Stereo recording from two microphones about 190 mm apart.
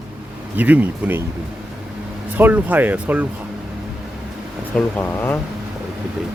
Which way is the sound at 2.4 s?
10° right (ahead or behind).